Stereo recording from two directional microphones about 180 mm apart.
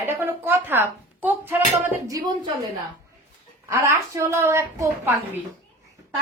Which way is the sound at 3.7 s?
15° right (ahead or behind).